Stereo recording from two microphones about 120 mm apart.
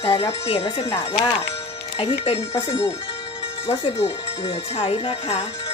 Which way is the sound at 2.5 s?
35° left (ahead or behind).